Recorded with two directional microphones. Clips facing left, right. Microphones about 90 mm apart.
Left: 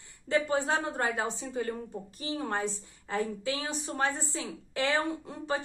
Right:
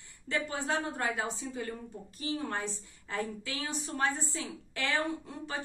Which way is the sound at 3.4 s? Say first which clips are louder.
Left 4 dB; 30° left (ahead or behind).